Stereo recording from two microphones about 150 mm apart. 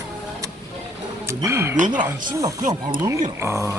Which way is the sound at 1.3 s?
15° right (ahead or behind).